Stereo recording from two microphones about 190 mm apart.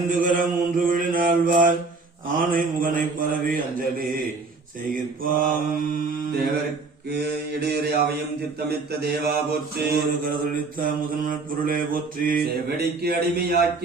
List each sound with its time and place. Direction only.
0.1 s mantra: 45° right (ahead or behind)
5.2 s mantra: 45° right (ahead or behind)